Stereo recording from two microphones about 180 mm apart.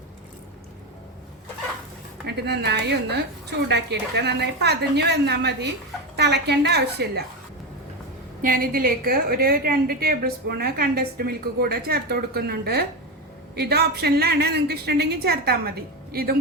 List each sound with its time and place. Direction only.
2.2 s a woman's voice: 65° right (ahead or behind)
8.4 s a woman's voice: 50° right (ahead or behind)